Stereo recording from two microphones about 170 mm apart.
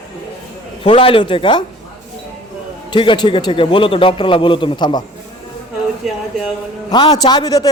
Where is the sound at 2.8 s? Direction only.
30° left (ahead or behind).